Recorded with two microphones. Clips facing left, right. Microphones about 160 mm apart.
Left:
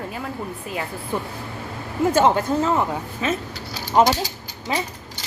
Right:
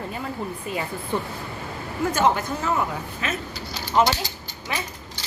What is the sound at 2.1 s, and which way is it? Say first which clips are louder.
Speech: left 4 dB; 25° left (ahead or behind).